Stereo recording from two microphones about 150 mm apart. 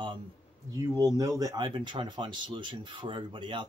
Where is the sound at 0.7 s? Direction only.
25° right (ahead or behind).